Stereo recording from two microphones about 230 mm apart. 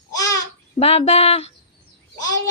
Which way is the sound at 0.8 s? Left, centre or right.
Left.